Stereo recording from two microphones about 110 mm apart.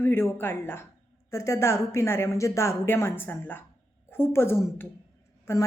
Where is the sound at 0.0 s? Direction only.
20° left (ahead or behind).